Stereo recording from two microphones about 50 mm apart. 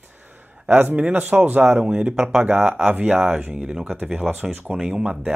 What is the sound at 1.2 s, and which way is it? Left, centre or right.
Speech, right.